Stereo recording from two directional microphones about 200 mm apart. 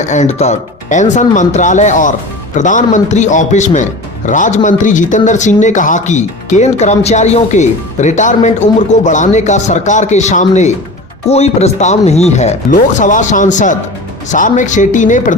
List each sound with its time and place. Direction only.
0.0 s speech: 35° left (ahead or behind)